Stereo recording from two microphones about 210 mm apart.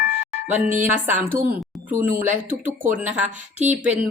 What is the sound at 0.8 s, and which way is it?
A woman's voice, 10° right (ahead or behind).